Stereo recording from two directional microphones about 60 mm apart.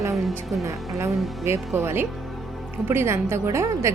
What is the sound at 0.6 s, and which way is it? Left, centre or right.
A woman's voice, right.